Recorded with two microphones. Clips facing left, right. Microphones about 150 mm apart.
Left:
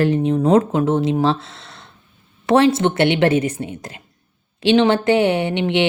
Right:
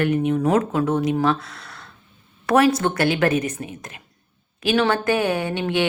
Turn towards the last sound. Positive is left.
turn(degrees=20)  # may be behind; listen again after turning